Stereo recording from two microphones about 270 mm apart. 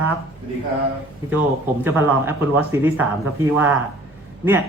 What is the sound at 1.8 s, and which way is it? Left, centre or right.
A man's voice, centre.